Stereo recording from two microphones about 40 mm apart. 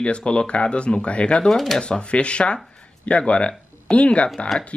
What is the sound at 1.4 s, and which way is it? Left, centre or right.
Speech, centre.